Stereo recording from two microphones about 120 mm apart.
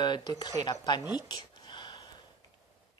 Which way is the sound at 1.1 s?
35° left (ahead or behind).